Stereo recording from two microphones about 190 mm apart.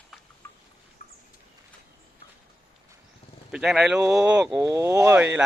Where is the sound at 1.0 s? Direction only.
45° left (ahead or behind).